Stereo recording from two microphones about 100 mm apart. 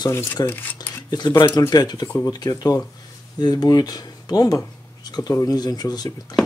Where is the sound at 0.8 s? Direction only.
45° left (ahead or behind).